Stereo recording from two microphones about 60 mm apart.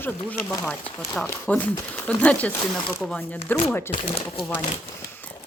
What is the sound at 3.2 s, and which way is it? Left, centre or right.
Speech, left.